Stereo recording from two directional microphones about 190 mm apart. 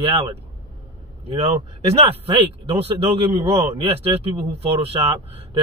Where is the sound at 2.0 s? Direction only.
30° right (ahead or behind).